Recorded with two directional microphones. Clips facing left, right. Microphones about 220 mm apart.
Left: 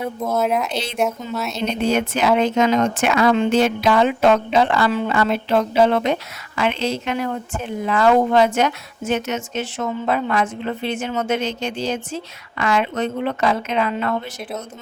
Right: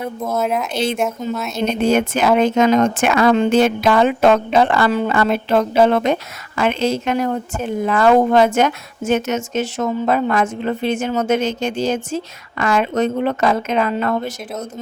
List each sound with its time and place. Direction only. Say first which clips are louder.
0.0 s speech: even; centre (ahead or behind)
0.7 s a woman's voice: right 6 dB; 50° right (ahead or behind)
0.9 s speech: right 1 dB; centre (ahead or behind)
1.5 s a woman's voice: right 4 dB; 50° right (ahead or behind)